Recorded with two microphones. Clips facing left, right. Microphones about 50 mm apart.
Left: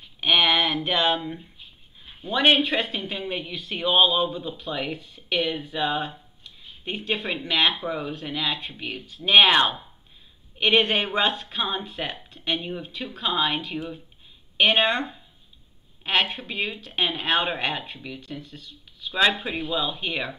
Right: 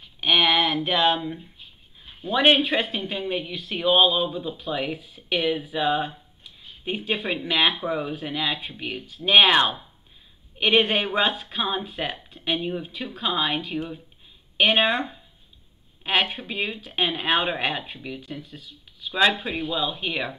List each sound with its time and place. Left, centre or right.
0.0 s speech: centre